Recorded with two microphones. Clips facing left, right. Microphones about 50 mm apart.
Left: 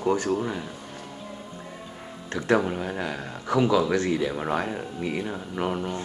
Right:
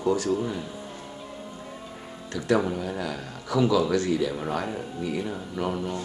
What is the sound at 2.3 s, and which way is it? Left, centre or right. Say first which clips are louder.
Speech: left 1 dB; left.